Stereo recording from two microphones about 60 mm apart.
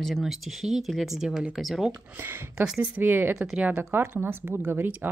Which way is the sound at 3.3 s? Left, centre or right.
Centre.